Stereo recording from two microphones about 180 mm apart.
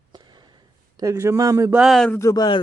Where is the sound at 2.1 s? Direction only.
20° left (ahead or behind).